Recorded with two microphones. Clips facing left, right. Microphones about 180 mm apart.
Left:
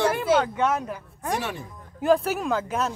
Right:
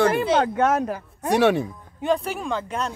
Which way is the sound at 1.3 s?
70° right (ahead or behind).